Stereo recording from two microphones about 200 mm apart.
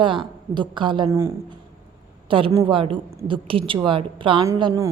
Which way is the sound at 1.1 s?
15° right (ahead or behind).